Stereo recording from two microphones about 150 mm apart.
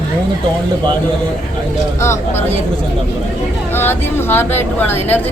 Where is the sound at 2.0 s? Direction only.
15° left (ahead or behind).